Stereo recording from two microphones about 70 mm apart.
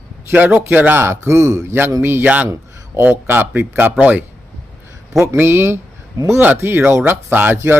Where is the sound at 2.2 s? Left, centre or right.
Right.